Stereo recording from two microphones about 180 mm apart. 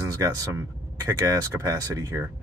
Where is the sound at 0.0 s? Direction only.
20° right (ahead or behind).